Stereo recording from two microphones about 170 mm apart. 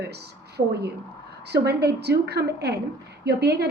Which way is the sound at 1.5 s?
75° right (ahead or behind).